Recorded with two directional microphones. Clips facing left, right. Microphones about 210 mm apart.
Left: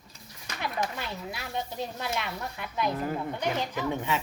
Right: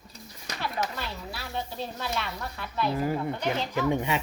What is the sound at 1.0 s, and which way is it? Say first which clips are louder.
Speech: even; 15° left (ahead or behind).